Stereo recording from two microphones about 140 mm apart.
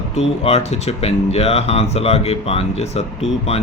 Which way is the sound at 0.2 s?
50° left (ahead or behind).